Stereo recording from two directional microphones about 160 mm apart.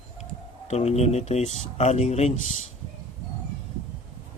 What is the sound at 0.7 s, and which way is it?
Speech, 40° left (ahead or behind).